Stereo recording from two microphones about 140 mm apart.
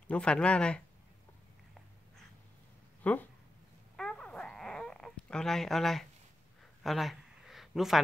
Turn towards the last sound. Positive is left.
turn(degrees=0)  # may be behind; listen again after turning